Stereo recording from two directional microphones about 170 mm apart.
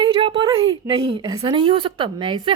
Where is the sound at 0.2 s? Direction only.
35° right (ahead or behind).